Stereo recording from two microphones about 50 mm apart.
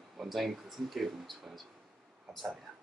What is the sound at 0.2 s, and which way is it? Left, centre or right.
Speech, centre.